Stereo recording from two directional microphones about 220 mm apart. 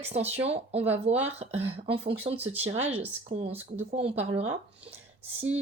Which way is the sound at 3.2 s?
25° right (ahead or behind).